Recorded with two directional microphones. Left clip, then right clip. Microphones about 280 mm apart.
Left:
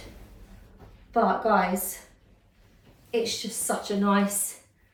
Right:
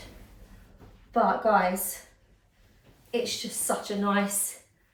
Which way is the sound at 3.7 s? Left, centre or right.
Centre.